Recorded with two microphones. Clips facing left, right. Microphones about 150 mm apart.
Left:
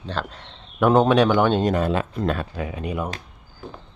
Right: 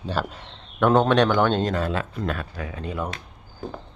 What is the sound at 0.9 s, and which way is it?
Speech, 10° left (ahead or behind).